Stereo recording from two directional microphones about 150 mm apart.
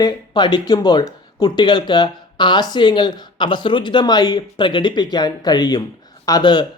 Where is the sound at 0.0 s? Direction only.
30° left (ahead or behind).